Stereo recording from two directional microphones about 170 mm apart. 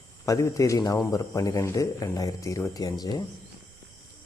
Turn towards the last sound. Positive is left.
turn(degrees=20)  # may be behind; listen again after turning